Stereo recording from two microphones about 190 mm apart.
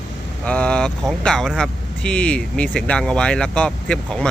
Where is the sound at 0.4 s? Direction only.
5° left (ahead or behind).